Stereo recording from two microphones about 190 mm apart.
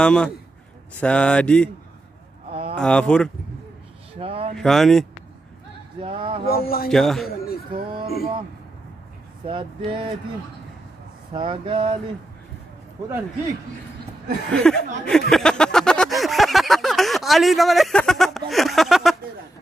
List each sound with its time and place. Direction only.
0.0 s speech: 5° left (ahead or behind)
2.7 s speech: 5° left (ahead or behind)
4.1 s speech: 30° right (ahead or behind)
4.6 s speech: centre (ahead or behind)
5.9 s a sound: 25° right (ahead or behind)
6.5 s a man's voice: 50° left (ahead or behind)
6.9 s speech: centre (ahead or behind)
7.2 s a man's voice: 55° left (ahead or behind)
7.7 s speech: 25° right (ahead or behind)
9.8 s a sound: 25° right (ahead or behind)
11.3 s a sound: 25° right (ahead or behind)
14.5 s speech: 5° left (ahead or behind)
15.0 s a sound: centre (ahead or behind)
18.5 s speech: centre (ahead or behind)